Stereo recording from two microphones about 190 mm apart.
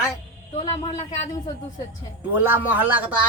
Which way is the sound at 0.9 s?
35° left (ahead or behind).